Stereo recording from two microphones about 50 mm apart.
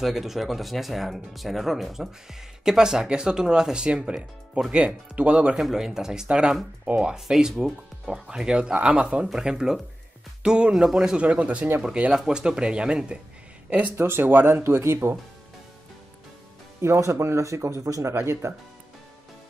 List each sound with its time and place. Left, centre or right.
0.0 s speech: centre
4.7 s speech: right
5.6 s speech: centre
11.1 s speech: right
12.1 s speech: centre
13.9 s speech: right
16.8 s speech: right